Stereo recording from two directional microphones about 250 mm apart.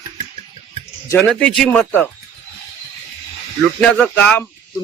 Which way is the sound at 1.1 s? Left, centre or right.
Centre.